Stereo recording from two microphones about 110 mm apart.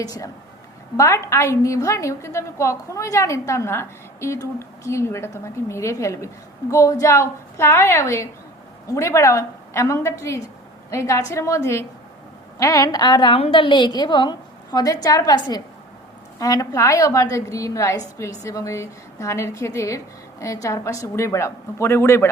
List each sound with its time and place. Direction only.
0.0 s a woman's voice: 35° left (ahead or behind)